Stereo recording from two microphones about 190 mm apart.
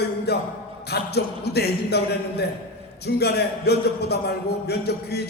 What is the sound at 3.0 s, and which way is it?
A man's voice, 60° left (ahead or behind).